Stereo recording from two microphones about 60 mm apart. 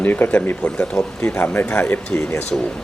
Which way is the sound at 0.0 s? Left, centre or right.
Left.